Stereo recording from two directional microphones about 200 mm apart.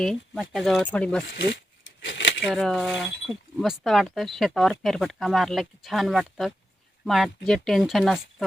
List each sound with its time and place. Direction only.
0.0 s speech: centre (ahead or behind)
2.0 s a sound: 65° left (ahead or behind)
2.5 s speech: centre (ahead or behind)